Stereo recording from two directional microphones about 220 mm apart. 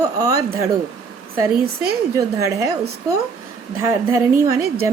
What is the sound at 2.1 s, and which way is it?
Speech, 15° right (ahead or behind).